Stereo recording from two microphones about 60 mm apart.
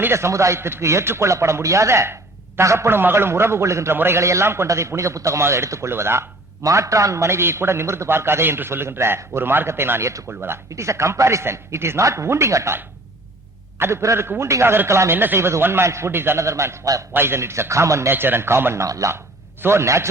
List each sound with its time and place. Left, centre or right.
0.1 s a man's voice: right
3.9 s speech: right
4.2 s a man's voice: right
6.7 s a man's voice: right
10.7 s a man's voice: right
13.7 s a man's voice: right
15.1 s speech: right
15.4 s a man's voice: right
16.4 s a man's voice: right
17.2 s a man's voice: right
18.1 s a man's voice: right
18.9 s a man's voice: right
19.6 s a man's voice: right